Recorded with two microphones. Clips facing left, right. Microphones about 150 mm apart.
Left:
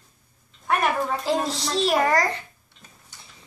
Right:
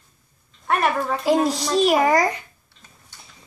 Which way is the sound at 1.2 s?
10° right (ahead or behind).